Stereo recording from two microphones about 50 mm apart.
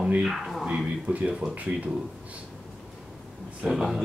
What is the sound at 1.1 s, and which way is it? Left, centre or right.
Speech, right.